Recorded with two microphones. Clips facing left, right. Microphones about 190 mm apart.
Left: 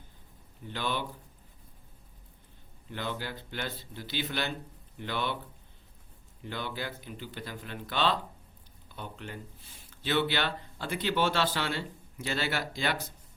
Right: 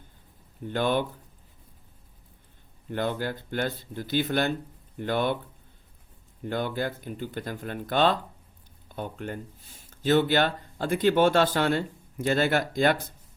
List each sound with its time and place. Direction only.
0.7 s speech: 50° right (ahead or behind)
2.9 s speech: 50° right (ahead or behind)
6.4 s speech: 50° right (ahead or behind)